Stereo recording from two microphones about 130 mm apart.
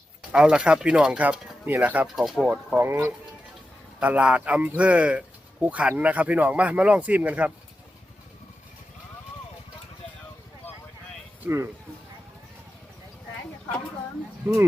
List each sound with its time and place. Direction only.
0.3 s speech: 5° right (ahead or behind)
2.1 s speech: centre (ahead or behind)
11.4 s speech: 20° right (ahead or behind)